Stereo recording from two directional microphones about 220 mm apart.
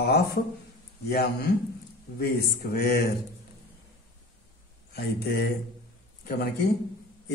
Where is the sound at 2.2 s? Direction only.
45° left (ahead or behind).